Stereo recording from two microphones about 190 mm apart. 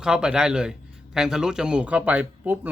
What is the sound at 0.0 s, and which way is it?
A man's voice, 5° right (ahead or behind).